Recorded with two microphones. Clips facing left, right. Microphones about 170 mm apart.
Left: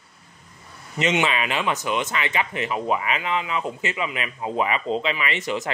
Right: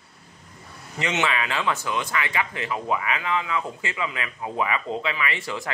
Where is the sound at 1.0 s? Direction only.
20° left (ahead or behind).